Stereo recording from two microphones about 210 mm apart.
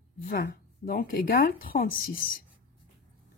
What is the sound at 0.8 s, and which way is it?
Speech, 45° left (ahead or behind).